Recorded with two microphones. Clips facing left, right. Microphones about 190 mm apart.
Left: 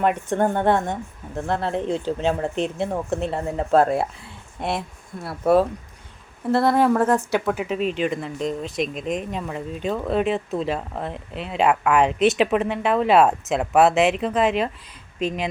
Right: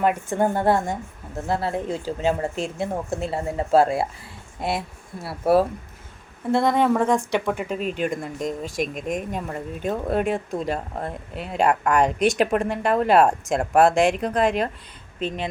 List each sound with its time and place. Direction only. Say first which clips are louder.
0.0 s speech: left 1 dB; 5° right (ahead or behind)
7.9 s speech: left 1 dB; 45° right (ahead or behind)
8.2 s speech: left 2 dB; 5° right (ahead or behind)
9.0 s speech: left 1 dB; 50° right (ahead or behind)
9.3 s speech: left 1 dB; 5° right (ahead or behind)